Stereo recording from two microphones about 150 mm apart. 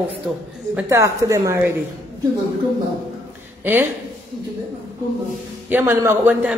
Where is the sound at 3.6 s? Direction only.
15° right (ahead or behind).